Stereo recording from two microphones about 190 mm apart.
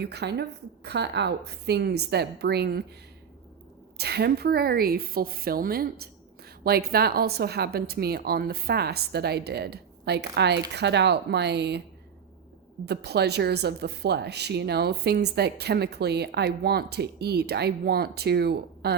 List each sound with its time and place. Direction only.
0.0 s speech: 60° right (ahead or behind)
3.9 s a woman's voice: 60° right (ahead or behind)
12.8 s speech: 60° right (ahead or behind)